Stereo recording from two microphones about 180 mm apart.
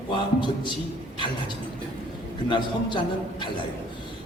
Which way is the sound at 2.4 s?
25° left (ahead or behind).